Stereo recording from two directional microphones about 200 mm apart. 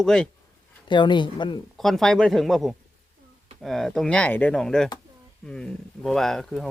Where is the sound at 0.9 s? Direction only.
25° left (ahead or behind).